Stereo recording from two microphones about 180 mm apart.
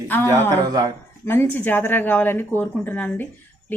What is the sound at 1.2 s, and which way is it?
Speech, 10° left (ahead or behind).